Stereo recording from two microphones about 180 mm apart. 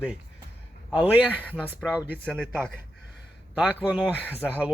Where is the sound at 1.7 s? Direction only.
10° right (ahead or behind).